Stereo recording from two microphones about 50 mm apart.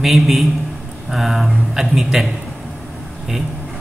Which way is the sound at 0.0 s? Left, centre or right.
Centre.